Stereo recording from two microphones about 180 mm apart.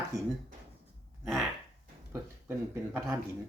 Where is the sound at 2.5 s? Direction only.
10° right (ahead or behind).